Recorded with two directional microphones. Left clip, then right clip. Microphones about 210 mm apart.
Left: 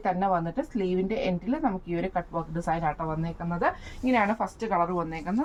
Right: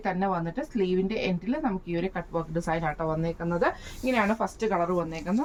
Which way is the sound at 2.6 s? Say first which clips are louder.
Left 3 dB; 10° left (ahead or behind).